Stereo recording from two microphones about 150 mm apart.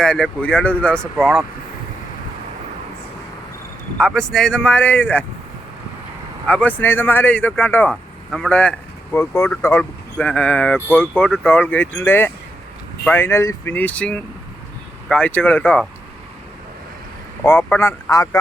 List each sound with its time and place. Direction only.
0.0 s speech: 5° left (ahead or behind)
3.9 s speech: 5° left (ahead or behind)
6.5 s speech: 10° left (ahead or behind)
9.1 s speech: 20° left (ahead or behind)
17.4 s speech: 15° left (ahead or behind)